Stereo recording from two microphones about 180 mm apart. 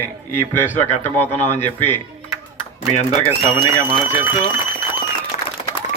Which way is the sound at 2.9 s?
40° left (ahead or behind).